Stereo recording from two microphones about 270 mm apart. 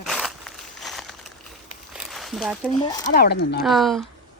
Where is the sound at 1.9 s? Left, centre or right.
Centre.